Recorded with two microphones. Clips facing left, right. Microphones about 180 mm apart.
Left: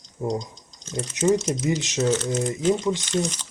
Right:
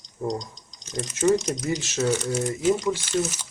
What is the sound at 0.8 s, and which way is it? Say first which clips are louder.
Speech: left 1 dB; 15° right (ahead or behind).